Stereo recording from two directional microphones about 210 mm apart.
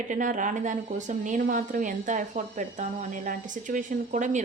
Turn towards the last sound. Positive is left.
turn(degrees=-35)  # may be behind; listen again after turning